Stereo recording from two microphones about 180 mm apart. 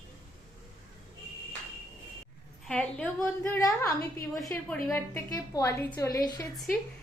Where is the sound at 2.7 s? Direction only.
5° left (ahead or behind).